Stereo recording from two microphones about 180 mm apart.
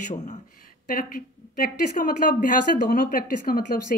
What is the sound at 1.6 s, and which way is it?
Speech, 50° left (ahead or behind).